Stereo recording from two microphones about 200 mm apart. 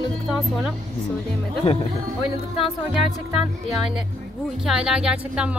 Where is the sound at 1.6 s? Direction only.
30° left (ahead or behind).